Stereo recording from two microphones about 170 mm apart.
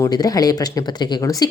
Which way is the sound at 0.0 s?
20° left (ahead or behind).